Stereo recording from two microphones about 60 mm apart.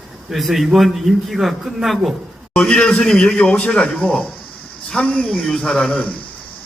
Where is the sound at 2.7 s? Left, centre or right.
Centre.